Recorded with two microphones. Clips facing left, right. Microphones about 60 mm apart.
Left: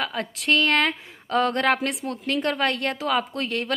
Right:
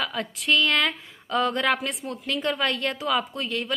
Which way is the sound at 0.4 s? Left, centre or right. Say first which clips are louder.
Left 2 dB; left.